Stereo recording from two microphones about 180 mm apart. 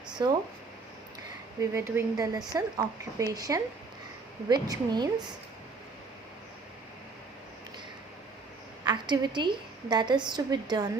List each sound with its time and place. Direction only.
0.2 s a woman's voice: 20° right (ahead or behind)
1.7 s a woman's voice: 15° right (ahead or behind)
8.8 s a woman's voice: 25° right (ahead or behind)